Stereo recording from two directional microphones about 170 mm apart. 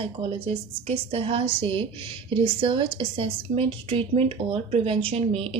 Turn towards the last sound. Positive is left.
turn(degrees=-35)  # may be behind; listen again after turning